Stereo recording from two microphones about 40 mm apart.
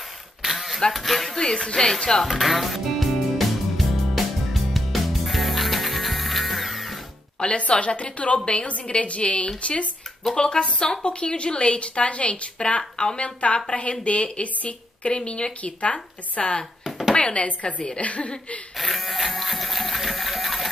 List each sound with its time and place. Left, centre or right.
0.4 s a sound: centre
0.9 s speech: centre
1.3 s speech: centre
2.2 s music: centre
7.3 s a woman's voice: left
18.8 s printer: centre